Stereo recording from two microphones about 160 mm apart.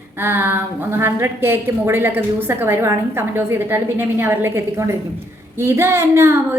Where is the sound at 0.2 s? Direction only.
15° right (ahead or behind).